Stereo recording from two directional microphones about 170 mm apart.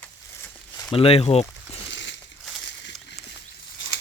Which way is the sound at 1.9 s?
90° left.